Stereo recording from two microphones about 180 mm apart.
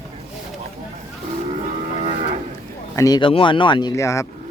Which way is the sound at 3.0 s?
25° left (ahead or behind).